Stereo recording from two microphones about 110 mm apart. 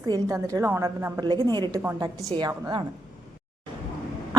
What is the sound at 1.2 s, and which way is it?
Speech, 40° right (ahead or behind).